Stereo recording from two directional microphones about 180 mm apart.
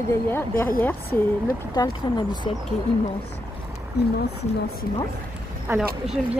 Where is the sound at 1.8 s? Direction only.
25° left (ahead or behind).